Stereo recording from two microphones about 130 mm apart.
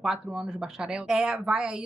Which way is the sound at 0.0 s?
5° right (ahead or behind).